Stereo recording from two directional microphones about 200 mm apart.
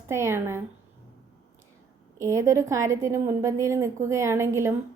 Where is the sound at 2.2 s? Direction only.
15° right (ahead or behind).